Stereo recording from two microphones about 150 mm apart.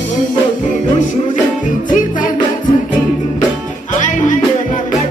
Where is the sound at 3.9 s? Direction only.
55° left (ahead or behind).